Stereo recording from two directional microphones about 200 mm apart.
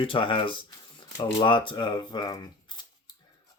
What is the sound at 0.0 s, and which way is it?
Speech, 25° left (ahead or behind).